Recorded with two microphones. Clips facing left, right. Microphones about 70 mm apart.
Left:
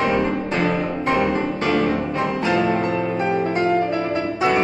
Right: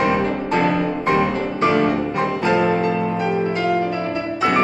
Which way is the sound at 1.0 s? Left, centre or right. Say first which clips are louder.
Left 1 dB; right.